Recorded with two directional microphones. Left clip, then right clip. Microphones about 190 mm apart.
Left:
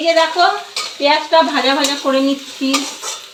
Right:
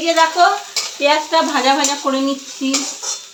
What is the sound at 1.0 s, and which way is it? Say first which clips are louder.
Stir: left 2 dB; 40° right (ahead or behind).